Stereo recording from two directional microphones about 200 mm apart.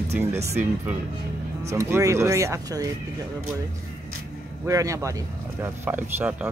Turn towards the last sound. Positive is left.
turn(degrees=-10)  # may be behind; listen again after turning